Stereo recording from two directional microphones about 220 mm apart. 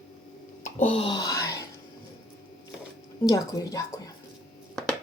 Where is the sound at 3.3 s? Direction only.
15° left (ahead or behind).